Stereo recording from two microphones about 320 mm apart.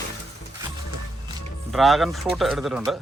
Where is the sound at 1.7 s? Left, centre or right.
Centre.